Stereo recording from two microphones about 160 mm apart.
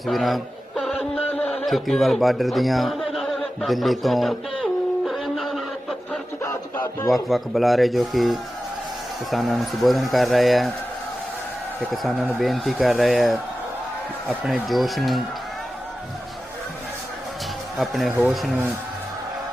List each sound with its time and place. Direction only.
0.0 s a sound: centre (ahead or behind)
6.4 s music: 20° left (ahead or behind)
7.1 s speech: centre (ahead or behind)
12.4 s speech: centre (ahead or behind)
17.7 s speech: centre (ahead or behind)